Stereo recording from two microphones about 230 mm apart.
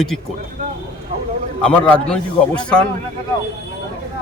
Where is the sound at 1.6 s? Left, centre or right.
Centre.